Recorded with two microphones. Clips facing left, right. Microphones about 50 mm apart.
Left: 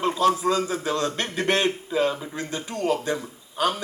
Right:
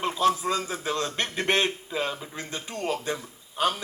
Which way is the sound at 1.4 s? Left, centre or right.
Right.